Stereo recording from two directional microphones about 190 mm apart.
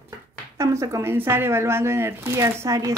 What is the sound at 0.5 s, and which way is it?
Speech, 15° right (ahead or behind).